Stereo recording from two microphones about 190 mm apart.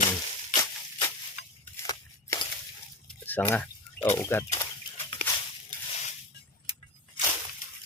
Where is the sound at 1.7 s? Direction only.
15° left (ahead or behind).